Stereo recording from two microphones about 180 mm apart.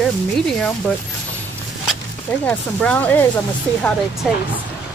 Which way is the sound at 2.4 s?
5° left (ahead or behind).